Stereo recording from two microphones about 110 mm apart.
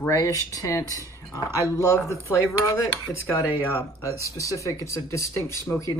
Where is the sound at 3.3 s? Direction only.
25° left (ahead or behind).